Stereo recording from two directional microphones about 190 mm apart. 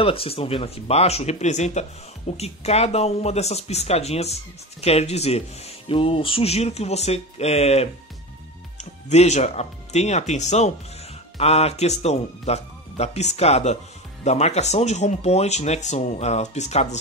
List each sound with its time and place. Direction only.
0.0 s speech: 30° left (ahead or behind)